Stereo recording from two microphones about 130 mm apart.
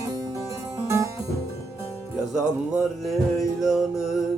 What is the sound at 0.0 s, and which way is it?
Harpsichord, 25° right (ahead or behind).